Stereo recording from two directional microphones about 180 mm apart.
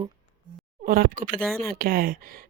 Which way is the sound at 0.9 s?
50° right (ahead or behind).